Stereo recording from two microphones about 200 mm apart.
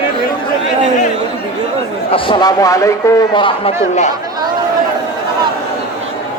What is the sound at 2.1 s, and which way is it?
A man's voice, 20° left (ahead or behind).